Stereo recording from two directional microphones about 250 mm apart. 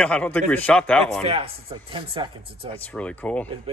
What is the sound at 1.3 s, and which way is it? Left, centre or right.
Speech, right.